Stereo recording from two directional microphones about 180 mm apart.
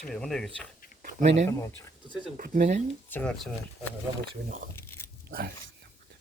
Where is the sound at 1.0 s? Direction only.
40° right (ahead or behind).